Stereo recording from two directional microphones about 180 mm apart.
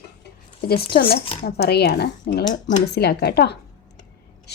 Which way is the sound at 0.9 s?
60° left (ahead or behind).